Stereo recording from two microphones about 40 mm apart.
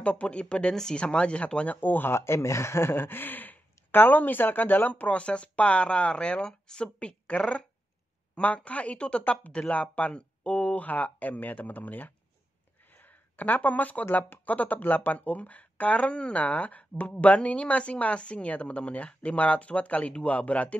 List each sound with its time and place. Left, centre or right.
0.0 s speech: left
1.8 s speech: left
5.0 s speech: left
12.9 s a sound: left
14.4 s speech: left